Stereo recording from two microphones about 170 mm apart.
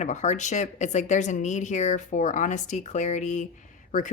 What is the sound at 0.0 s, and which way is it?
A woman's voice, 45° left (ahead or behind).